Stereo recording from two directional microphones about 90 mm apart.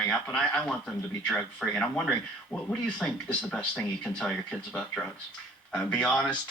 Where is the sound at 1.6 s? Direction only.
20° left (ahead or behind).